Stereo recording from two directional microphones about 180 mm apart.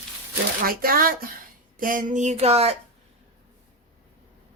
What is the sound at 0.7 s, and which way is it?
A woman's voice, 55° right (ahead or behind).